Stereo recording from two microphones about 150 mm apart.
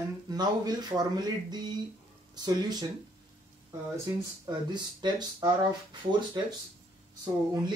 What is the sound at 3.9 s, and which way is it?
Speech, 25° right (ahead or behind).